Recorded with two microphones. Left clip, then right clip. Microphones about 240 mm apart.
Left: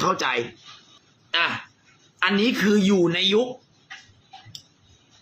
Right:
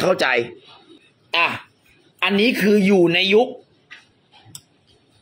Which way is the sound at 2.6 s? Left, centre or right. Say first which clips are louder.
Right 5 dB; centre.